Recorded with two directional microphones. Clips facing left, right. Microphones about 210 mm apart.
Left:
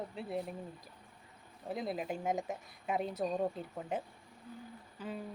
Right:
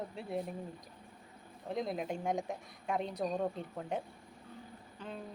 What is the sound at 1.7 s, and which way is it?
A woman's voice, 5° left (ahead or behind).